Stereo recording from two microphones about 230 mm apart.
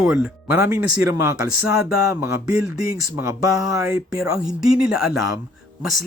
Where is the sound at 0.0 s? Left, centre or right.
Centre.